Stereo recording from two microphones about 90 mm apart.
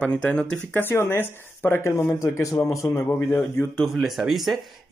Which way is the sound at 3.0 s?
25° left (ahead or behind).